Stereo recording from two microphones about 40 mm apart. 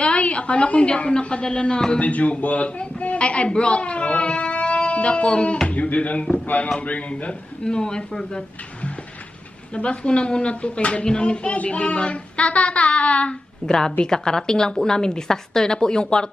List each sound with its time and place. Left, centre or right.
0.0 s a woman's voice: left
7.6 s speech: centre
9.8 s speech: left
13.7 s a woman's voice: centre